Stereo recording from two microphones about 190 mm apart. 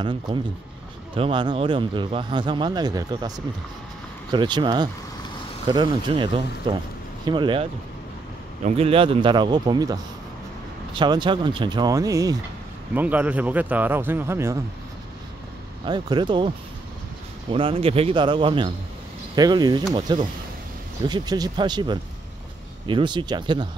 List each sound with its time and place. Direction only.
0.0 s speech: 25° right (ahead or behind)
8.6 s a man's voice: 30° right (ahead or behind); by 14.6 s 15° right (ahead or behind)
15.8 s speech: 25° right (ahead or behind)